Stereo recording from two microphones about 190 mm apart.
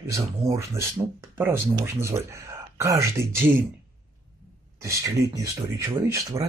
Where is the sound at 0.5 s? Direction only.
15° right (ahead or behind).